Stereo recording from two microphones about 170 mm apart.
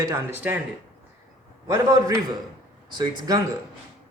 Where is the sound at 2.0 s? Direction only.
20° right (ahead or behind).